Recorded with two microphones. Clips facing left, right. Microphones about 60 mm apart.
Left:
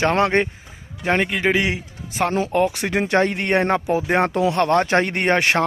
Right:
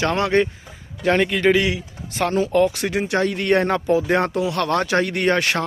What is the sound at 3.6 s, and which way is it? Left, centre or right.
A man's voice, centre.